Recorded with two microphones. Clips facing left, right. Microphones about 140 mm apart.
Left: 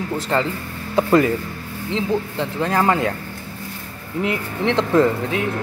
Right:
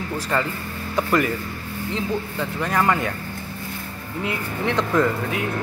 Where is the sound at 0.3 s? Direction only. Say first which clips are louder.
Left 3 dB; 25° left (ahead or behind).